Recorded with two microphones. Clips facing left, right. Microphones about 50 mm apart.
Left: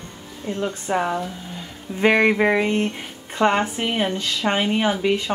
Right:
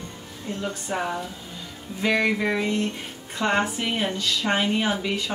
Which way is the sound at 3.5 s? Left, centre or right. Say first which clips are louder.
Left 1 dB; left.